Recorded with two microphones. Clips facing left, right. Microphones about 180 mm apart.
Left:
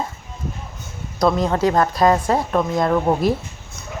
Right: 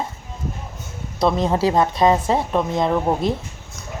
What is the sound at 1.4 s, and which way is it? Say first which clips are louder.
Speech: even; 5° right (ahead or behind).